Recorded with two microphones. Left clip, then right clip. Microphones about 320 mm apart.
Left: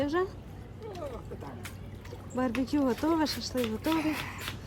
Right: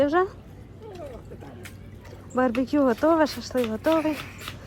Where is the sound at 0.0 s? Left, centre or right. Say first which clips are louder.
Right 8 dB; centre.